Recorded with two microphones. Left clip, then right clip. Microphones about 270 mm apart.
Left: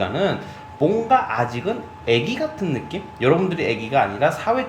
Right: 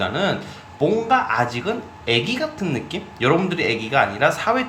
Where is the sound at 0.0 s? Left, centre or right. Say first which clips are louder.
Even; centre.